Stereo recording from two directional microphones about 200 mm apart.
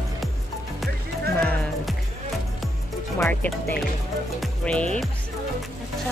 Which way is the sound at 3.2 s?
5° left (ahead or behind).